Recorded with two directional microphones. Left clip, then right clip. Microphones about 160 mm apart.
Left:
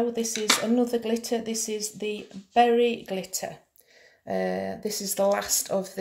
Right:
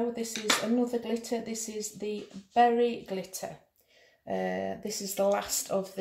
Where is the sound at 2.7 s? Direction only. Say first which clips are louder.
Left 4 dB; 40° left (ahead or behind).